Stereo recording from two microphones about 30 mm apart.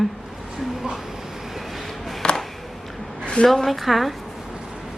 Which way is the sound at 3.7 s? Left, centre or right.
Centre.